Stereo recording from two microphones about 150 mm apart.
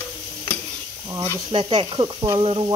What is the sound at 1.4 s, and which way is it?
Speech, 35° right (ahead or behind).